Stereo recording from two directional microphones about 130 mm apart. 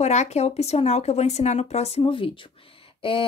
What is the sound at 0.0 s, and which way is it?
Speech, 60° left (ahead or behind).